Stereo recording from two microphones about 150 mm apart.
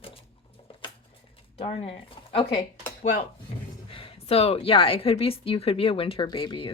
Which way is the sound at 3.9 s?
40° left (ahead or behind).